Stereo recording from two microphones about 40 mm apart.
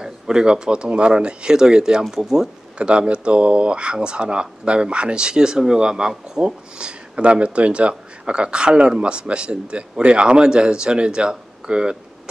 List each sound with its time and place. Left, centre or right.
0.0 s speech: centre
2.8 s speech: right